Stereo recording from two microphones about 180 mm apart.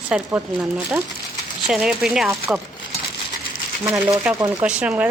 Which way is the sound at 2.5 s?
5° right (ahead or behind).